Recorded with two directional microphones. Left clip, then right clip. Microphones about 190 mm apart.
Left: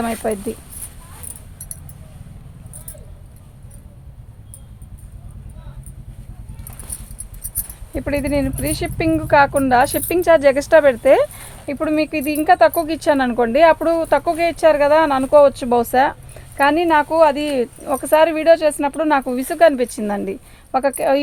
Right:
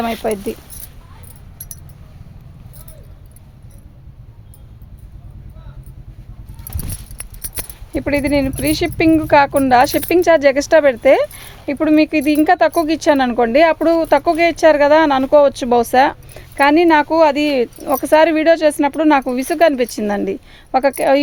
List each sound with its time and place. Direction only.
0.0 s speech: 30° right (ahead or behind)
6.8 s clip-clop: 35° right (ahead or behind)
7.9 s speech: 45° right (ahead or behind)